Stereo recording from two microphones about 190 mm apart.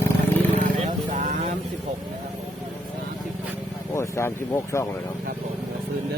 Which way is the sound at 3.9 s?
15° left (ahead or behind).